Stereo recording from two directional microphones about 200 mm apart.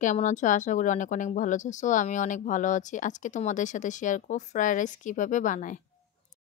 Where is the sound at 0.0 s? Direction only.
40° left (ahead or behind).